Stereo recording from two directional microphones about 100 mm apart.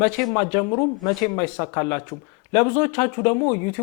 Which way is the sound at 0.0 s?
15° left (ahead or behind).